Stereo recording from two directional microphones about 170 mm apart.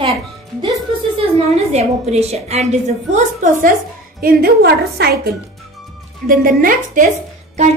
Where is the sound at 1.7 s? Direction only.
40° right (ahead or behind).